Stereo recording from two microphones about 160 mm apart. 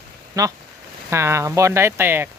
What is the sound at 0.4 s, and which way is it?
Speech, 20° right (ahead or behind).